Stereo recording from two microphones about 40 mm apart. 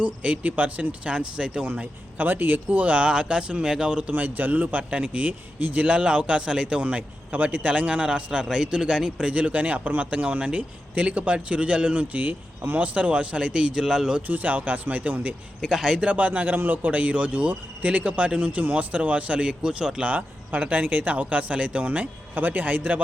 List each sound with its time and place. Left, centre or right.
0.0 s speech: right
2.1 s speech: right
4.1 s speech: right
5.8 s speech: right
6.8 s speech: right
12.1 s a man's voice: right
12.8 s speech: right
13.8 s speech: centre
14.2 s speech: right
15.6 s speech: centre
16.0 s speech: right
20.1 s speech: right
22.4 s a man's voice: right